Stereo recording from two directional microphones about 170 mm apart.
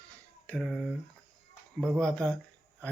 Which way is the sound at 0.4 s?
5° left (ahead or behind).